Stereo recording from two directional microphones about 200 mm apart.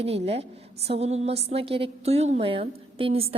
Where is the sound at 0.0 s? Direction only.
30° right (ahead or behind).